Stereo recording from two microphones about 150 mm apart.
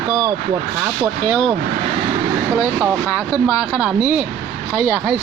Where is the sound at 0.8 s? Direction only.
10° right (ahead or behind).